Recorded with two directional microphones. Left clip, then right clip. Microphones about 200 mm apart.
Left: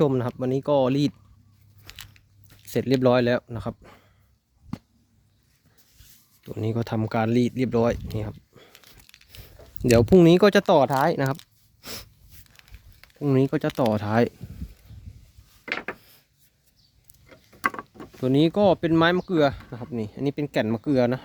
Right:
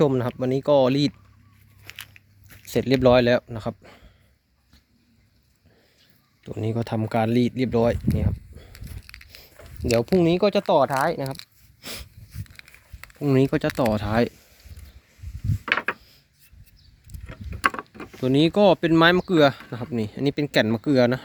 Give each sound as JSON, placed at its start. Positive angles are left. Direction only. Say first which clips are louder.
{"t": 0.0, "sound": "speech", "louder": "right 2 dB", "side_deg": 0}
{"t": 2.5, "sound": "speech", "louder": "right 2 dB", "side_deg": 0}
{"t": 6.4, "sound": "speech", "louder": "right 1 dB", "side_deg": 0}
{"t": 9.2, "sound": "a sound", "louder": "right 2 dB", "side_deg": 10}
{"t": 9.8, "sound": "speech", "louder": "left 4 dB", "side_deg": 30}
{"t": 11.8, "sound": "a sound", "louder": "right 2 dB", "side_deg": 5}
{"t": 12.6, "sound": "speech", "louder": "right 7 dB", "side_deg": 0}
{"t": 15.7, "sound": "a sound", "louder": "right 7 dB", "side_deg": 0}
{"t": 17.6, "sound": "speech", "louder": "right 4 dB", "side_deg": 0}